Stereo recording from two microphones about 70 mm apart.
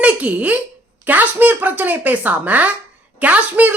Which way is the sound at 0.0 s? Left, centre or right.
Centre.